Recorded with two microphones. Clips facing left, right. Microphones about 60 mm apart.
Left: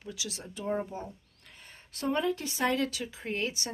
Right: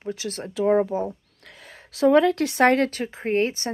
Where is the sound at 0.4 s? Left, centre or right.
Right.